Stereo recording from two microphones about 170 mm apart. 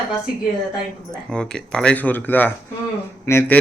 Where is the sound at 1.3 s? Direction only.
5° left (ahead or behind).